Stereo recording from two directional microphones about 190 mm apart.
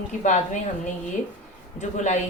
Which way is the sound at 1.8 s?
40° left (ahead or behind).